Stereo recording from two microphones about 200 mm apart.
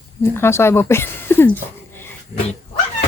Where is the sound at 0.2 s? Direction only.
10° left (ahead or behind).